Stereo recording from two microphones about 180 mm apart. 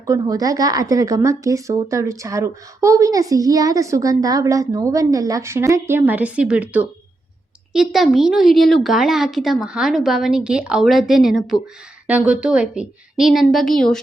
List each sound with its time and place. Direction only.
0.0 s a woman's voice: 20° right (ahead or behind); by 14.0 s 5° left (ahead or behind)